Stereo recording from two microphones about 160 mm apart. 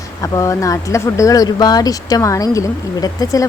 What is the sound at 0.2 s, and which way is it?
Speech, 20° left (ahead or behind).